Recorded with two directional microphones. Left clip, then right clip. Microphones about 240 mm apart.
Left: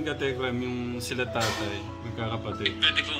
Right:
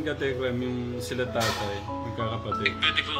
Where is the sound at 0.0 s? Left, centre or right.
Left.